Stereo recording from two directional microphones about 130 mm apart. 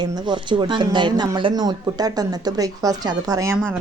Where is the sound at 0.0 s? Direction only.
35° right (ahead or behind).